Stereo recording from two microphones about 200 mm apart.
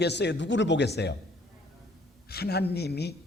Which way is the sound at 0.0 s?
60° left (ahead or behind).